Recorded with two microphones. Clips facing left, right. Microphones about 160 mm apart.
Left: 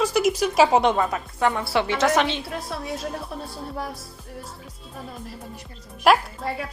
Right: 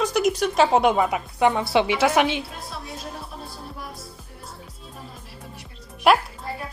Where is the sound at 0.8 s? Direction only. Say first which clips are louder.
Right 1 dB; 10° right (ahead or behind).